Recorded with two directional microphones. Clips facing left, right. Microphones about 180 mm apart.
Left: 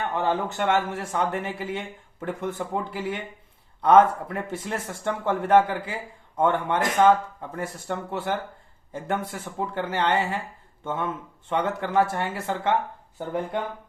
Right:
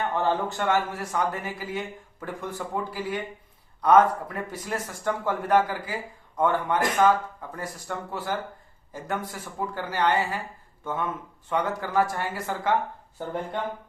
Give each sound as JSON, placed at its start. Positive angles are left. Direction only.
{"t": 0.1, "sound": "speech", "side_deg": 15}